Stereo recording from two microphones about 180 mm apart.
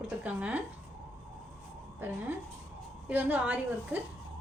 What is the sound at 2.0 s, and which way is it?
A woman's voice, 10° right (ahead or behind).